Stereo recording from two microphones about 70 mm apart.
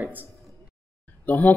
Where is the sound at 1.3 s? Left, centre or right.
Left.